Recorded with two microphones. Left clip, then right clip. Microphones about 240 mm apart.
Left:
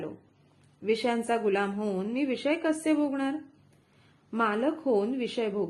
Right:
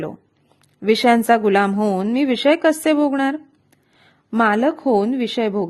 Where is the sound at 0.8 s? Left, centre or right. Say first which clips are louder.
Right 13 dB; right.